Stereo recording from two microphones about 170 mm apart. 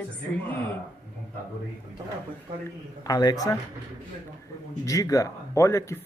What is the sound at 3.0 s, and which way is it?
Speech, 20° left (ahead or behind).